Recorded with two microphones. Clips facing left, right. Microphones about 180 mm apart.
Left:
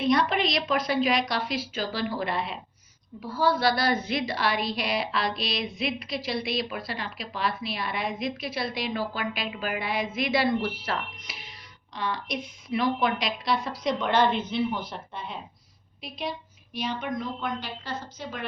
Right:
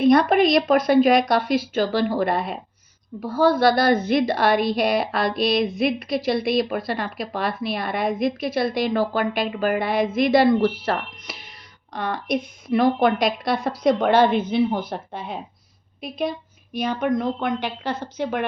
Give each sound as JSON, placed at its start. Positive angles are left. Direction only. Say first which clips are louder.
{"t": 0.0, "sound": "a woman's voice", "louder": "right 8 dB", "side_deg": -50}
{"t": 11.9, "sound": "a woman's voice", "louder": "right 7 dB", "side_deg": -55}